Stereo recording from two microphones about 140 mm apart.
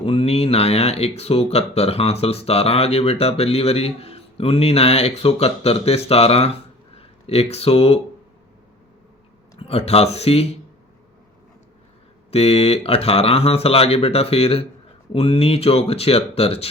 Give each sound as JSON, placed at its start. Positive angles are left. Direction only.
{"t": 0.0, "sound": "speech", "side_deg": 45}
{"t": 9.6, "sound": "speech", "side_deg": 45}
{"t": 12.3, "sound": "speech", "side_deg": 45}